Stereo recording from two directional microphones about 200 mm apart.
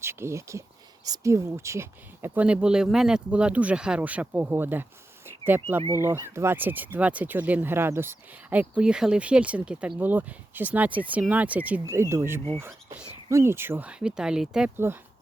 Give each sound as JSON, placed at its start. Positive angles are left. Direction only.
{"t": 0.0, "sound": "speech", "side_deg": -10}